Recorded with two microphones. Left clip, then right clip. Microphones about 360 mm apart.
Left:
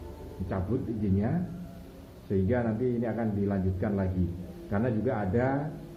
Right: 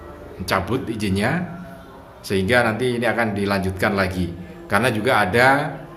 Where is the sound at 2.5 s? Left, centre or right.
Right.